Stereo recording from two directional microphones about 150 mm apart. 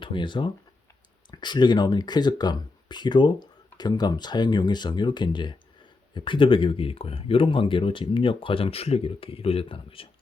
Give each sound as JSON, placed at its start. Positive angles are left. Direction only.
{"t": 0.0, "sound": "speech", "side_deg": 35}